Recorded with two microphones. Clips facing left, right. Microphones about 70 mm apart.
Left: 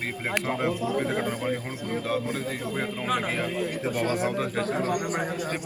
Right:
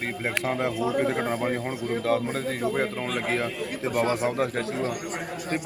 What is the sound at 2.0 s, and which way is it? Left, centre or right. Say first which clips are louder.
Speech: right 4 dB; right.